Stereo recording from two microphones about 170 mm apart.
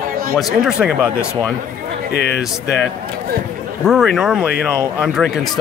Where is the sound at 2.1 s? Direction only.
75° left (ahead or behind).